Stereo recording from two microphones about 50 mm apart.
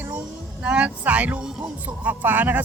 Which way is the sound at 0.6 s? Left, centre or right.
Right.